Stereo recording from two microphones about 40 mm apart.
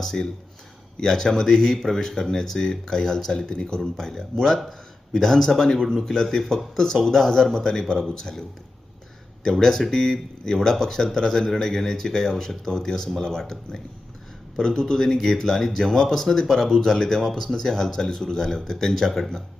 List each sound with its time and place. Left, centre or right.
0.0 s speech: centre
14.6 s speech: centre
18.9 s speech: centre